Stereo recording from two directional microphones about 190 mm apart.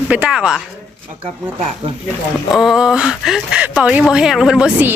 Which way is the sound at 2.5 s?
Centre (ahead or behind).